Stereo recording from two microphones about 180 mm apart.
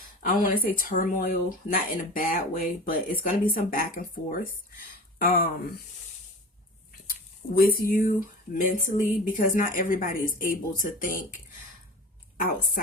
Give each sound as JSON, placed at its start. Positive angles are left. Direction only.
{"t": 0.4, "sound": "speech", "side_deg": 50}
{"t": 6.9, "sound": "speech", "side_deg": 55}
{"t": 12.4, "sound": "speech", "side_deg": 50}